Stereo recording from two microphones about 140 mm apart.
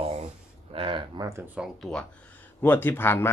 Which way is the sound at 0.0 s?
50° right (ahead or behind).